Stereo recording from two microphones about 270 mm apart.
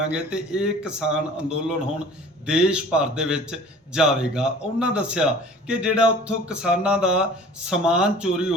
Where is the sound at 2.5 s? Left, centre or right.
Centre.